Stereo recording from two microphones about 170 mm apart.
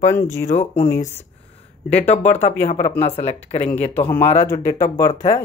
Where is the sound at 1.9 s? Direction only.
40° left (ahead or behind).